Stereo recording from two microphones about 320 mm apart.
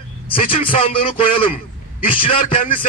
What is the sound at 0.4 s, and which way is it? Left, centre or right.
A man's voice, centre.